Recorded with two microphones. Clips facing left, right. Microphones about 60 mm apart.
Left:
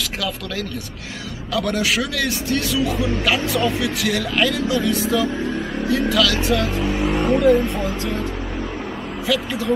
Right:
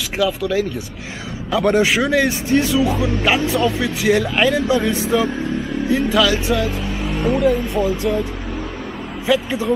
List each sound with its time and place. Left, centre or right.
0.2 s speech: centre
6.5 s speech: centre
9.3 s speech: centre